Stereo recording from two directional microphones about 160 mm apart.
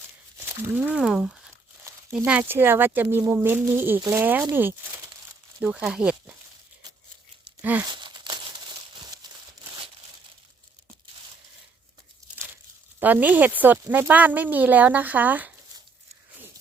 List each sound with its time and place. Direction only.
0.3 s speech: 10° right (ahead or behind)
7.6 s a sound: 10° right (ahead or behind)
7.9 s crumpling: 30° right (ahead or behind)
9.2 s a sound: 25° right (ahead or behind)
12.2 s tearing: 20° right (ahead or behind)
13.0 s speech: 10° right (ahead or behind)